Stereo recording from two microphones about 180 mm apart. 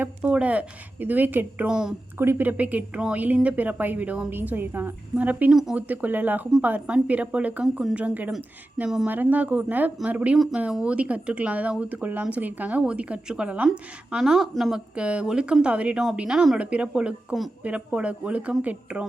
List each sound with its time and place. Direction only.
0.0 s speech: 10° right (ahead or behind)